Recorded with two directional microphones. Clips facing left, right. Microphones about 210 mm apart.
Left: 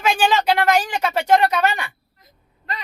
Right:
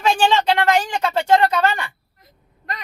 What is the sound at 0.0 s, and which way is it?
Speech, 5° left (ahead or behind).